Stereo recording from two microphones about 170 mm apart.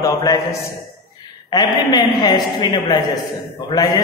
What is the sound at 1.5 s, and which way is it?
A man's voice, 25° left (ahead or behind).